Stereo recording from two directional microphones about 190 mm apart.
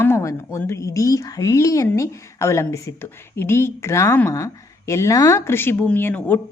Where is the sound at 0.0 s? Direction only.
15° left (ahead or behind).